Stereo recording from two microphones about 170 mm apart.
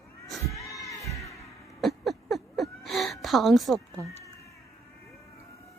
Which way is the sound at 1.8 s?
Centre (ahead or behind).